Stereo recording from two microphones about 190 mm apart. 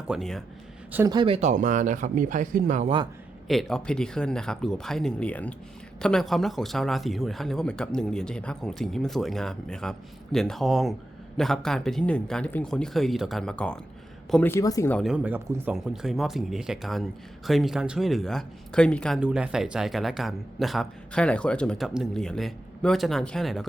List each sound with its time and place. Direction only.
0.1 s a man's voice: centre (ahead or behind)
0.9 s speech: 20° right (ahead or behind); by 2.9 s 40° right (ahead or behind)
3.4 s a man's voice: centre (ahead or behind); by 14.9 s 15° left (ahead or behind)
14.9 s a man's voice: 5° right (ahead or behind)